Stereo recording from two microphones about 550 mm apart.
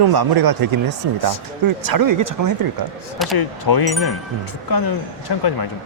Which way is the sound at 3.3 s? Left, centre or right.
Left.